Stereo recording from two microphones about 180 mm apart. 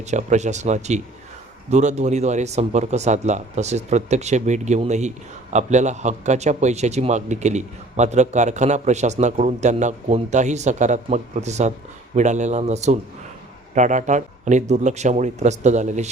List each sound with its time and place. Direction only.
0.0 s speech: 40° right (ahead or behind)